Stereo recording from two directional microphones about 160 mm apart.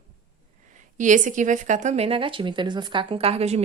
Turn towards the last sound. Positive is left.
turn(degrees=-40)  # may be behind; listen again after turning